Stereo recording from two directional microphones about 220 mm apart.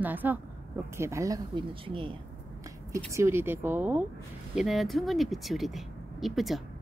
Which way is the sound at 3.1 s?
10° right (ahead or behind).